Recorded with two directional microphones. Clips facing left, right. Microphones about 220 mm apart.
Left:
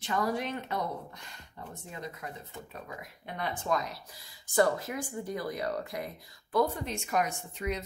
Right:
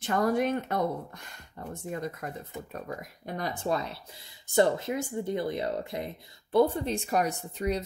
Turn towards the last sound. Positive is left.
turn(degrees=-35)  # may be behind; listen again after turning